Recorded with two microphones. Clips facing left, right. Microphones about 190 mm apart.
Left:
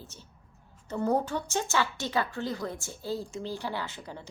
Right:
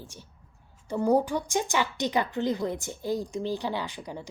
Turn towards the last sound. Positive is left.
turn(degrees=-15)  # may be behind; listen again after turning